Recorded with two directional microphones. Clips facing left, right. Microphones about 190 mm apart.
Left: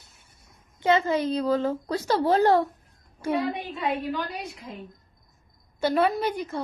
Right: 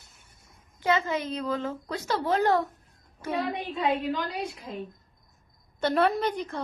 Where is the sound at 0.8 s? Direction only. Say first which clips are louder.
Left 4 dB; 30° left (ahead or behind).